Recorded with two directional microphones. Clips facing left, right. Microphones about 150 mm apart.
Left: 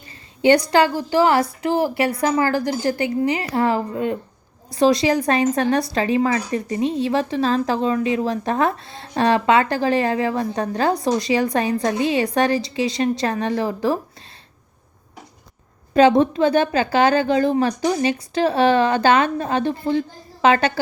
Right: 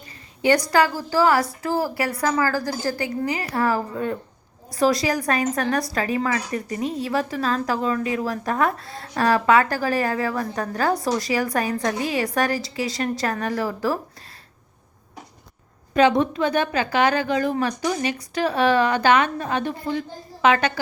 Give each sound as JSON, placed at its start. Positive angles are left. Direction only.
{"t": 0.4, "sound": "a woman's voice", "side_deg": 25}
{"t": 16.0, "sound": "a woman's voice", "side_deg": 30}